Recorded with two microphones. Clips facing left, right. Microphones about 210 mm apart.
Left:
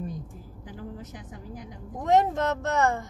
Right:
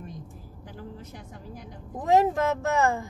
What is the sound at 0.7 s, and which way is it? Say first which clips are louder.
Speech: left 2 dB; 15° left (ahead or behind).